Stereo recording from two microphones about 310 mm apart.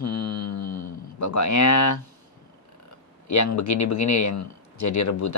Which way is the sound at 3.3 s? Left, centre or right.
Left.